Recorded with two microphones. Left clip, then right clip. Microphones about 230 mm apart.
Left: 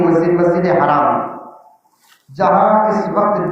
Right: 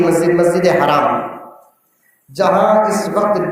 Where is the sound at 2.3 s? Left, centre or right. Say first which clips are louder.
Even; right.